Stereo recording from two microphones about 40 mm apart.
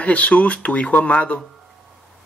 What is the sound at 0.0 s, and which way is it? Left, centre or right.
Speech, left.